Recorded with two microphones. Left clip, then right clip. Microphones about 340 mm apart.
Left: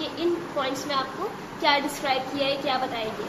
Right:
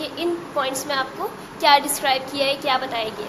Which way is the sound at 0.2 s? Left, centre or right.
Right.